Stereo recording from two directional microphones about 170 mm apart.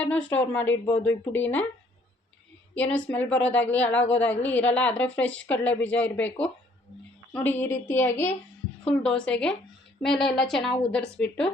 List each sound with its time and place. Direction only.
0.0 s a woman's voice: 10° left (ahead or behind)
2.7 s a woman's voice: 10° left (ahead or behind)
7.3 s a woman's voice: 15° left (ahead or behind)